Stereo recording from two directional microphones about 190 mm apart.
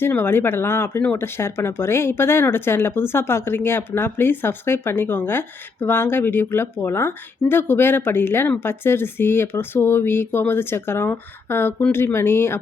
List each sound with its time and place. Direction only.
0.0 s speech: 10° left (ahead or behind)